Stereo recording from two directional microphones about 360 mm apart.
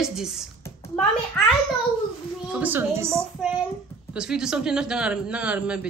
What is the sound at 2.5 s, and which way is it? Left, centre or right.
Speech, centre.